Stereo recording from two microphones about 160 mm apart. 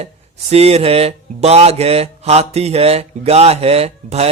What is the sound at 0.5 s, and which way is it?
Speech, 40° right (ahead or behind).